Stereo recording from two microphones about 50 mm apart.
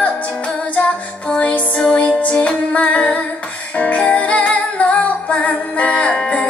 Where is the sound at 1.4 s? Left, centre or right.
Left.